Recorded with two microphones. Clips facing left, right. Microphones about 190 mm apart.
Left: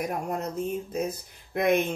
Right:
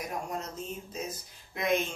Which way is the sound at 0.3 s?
60° left (ahead or behind).